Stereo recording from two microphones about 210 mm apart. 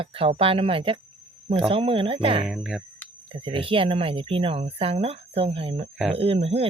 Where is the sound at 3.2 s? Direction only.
25° right (ahead or behind).